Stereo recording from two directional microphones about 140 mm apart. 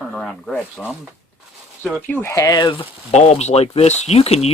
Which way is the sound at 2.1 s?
15° left (ahead or behind).